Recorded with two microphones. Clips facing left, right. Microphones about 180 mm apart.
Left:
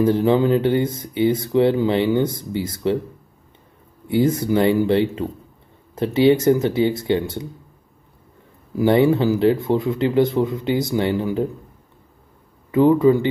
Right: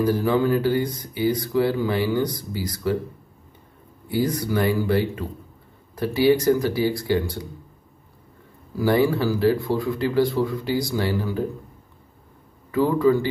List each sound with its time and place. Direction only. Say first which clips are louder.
0.0 s speech: left 4 dB; 25° left (ahead or behind)
4.1 s speech: left 5 dB; 25° left (ahead or behind)
8.7 s speech: left 4 dB; 25° left (ahead or behind)
12.7 s speech: left 5 dB; 20° left (ahead or behind)